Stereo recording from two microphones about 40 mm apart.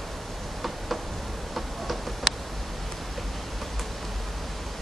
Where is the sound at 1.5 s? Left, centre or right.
Centre.